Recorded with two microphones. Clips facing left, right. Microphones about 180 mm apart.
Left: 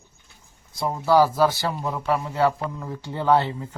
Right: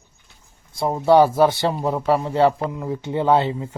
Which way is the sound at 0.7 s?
25° right (ahead or behind).